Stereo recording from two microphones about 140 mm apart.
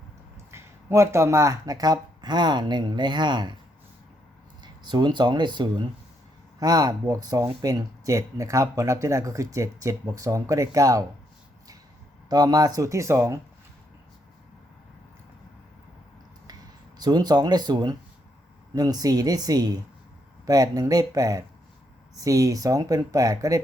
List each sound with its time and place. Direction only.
0.5 s speech: 20° right (ahead or behind)
4.6 s speech: 30° right (ahead or behind)
12.3 s speech: 30° right (ahead or behind)
17.0 s speech: 30° right (ahead or behind)